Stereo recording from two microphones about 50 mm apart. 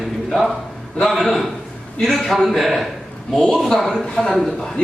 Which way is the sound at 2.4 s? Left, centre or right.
Centre.